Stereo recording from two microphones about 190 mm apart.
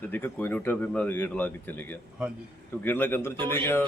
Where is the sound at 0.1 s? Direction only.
10° left (ahead or behind).